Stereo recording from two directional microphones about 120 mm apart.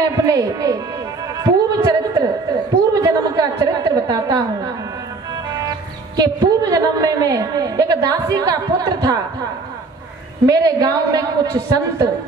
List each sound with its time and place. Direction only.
0.2 s a woman's voice: 30° right (ahead or behind)
1.3 s a sound: 30° right (ahead or behind)
2.9 s a woman's voice: 30° right (ahead or behind)
5.7 s a woman's voice: 35° right (ahead or behind)
10.4 s a woman's voice: 30° right (ahead or behind)